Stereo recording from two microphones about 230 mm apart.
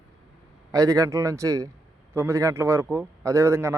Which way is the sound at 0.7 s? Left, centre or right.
Centre.